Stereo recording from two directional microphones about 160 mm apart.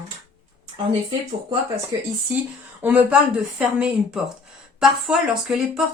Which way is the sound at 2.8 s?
10° right (ahead or behind).